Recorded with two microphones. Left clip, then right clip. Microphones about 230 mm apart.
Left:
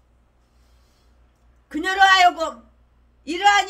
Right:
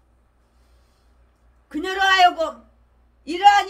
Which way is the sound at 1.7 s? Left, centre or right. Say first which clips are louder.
Left 4 dB; centre.